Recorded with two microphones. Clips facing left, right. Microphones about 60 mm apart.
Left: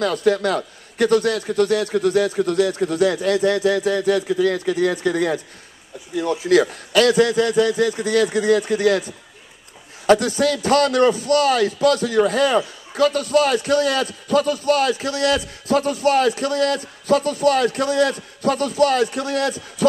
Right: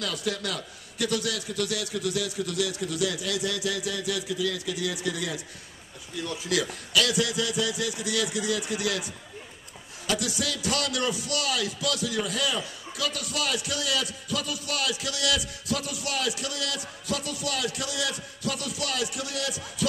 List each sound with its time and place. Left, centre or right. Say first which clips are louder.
0.0 s a man's voice: left 13 dB; left